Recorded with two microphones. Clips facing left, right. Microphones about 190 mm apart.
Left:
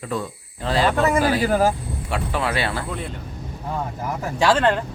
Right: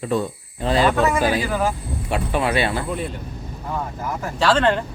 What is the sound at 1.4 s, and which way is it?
Speech, 40° left (ahead or behind).